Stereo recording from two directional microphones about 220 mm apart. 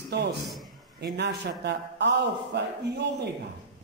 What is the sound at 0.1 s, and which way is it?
A man's voice, 50° right (ahead or behind).